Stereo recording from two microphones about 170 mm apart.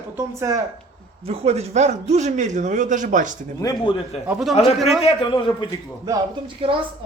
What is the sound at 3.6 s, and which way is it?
Speech, 20° left (ahead or behind).